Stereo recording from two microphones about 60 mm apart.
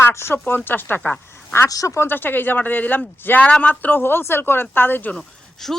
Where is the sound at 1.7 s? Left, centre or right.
Left.